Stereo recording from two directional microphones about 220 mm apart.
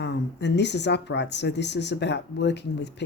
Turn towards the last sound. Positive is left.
turn(degrees=50)  # may be behind; listen again after turning